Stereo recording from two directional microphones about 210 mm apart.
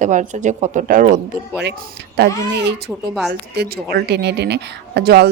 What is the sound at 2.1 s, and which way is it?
Speech, 50° right (ahead or behind).